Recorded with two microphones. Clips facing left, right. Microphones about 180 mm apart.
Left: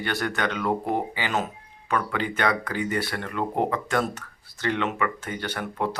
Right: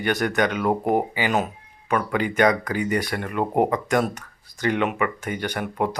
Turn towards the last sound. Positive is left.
turn(degrees=-15)  # may be behind; listen again after turning